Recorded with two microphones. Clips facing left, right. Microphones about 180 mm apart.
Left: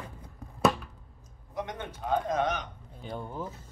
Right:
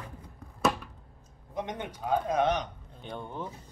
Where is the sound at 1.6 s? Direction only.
20° right (ahead or behind).